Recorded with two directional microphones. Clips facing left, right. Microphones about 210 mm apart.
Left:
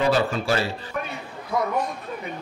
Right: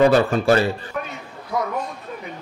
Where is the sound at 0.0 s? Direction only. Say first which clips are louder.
Right 6 dB; 55° right (ahead or behind).